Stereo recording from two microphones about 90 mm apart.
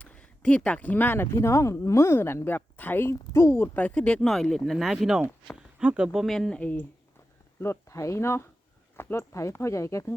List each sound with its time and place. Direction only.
0.0 s speech: 15° left (ahead or behind); by 3.7 s 30° left (ahead or behind)
3.8 s speech: 15° left (ahead or behind); by 6.1 s 10° right (ahead or behind)
6.1 s speech: centre (ahead or behind)
6.6 s speech: 15° left (ahead or behind)
7.6 s speech: 30° left (ahead or behind)